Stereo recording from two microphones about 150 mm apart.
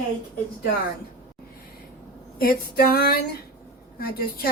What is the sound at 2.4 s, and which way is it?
Speech, 90° left.